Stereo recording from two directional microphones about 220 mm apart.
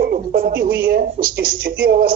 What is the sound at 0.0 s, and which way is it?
A woman's voice, 40° right (ahead or behind).